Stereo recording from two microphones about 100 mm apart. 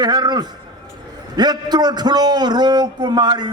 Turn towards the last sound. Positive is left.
turn(degrees=-45)  # may be behind; listen again after turning